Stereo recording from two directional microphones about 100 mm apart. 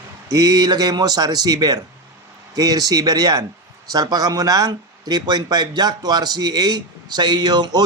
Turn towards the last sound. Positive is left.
turn(degrees=-45)  # may be behind; listen again after turning